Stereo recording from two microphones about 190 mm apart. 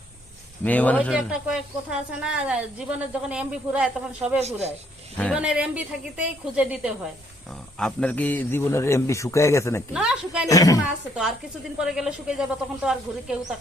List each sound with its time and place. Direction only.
0.6 s a man's voice: 10° left (ahead or behind)
1.1 s speech: 5° right (ahead or behind)
4.4 s speech: 35° right (ahead or behind)
5.3 s speech: 5° right (ahead or behind)
7.8 s a man's voice: 5° left (ahead or behind)
9.9 s speech: 5° right (ahead or behind)
10.5 s a woman's voice: 20° left (ahead or behind)
10.8 s speech: 5° right (ahead or behind)